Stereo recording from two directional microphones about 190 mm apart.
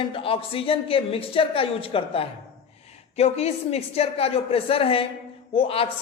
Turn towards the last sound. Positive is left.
turn(degrees=30)  # may be behind; listen again after turning